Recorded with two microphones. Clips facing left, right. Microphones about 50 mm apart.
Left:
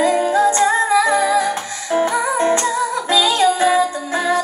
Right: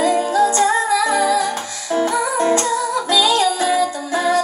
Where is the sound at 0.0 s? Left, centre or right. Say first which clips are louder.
Left 1 dB; left.